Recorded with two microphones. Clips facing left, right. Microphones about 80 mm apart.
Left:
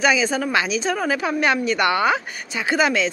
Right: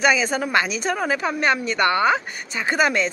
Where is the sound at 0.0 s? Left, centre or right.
Centre.